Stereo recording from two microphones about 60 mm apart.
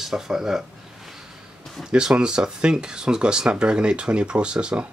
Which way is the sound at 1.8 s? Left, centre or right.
Centre.